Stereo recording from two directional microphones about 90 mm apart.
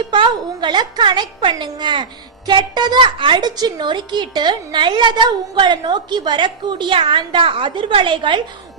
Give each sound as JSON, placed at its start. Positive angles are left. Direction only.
{"t": 0.1, "sound": "a woman's voice", "side_deg": -60}